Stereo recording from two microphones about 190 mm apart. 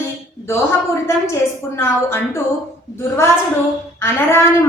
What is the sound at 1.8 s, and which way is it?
Speech, 15° left (ahead or behind).